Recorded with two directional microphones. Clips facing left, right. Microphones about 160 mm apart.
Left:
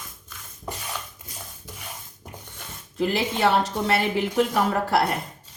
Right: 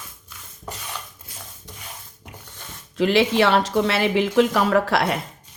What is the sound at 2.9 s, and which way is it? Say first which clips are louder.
Speech: right 6 dB; 90° right.